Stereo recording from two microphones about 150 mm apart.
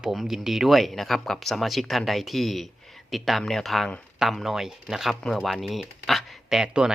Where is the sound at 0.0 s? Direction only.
Centre (ahead or behind).